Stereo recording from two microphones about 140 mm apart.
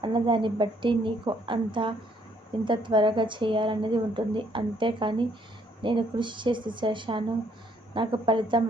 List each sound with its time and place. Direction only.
0.0 s a woman's voice: 35° right (ahead or behind)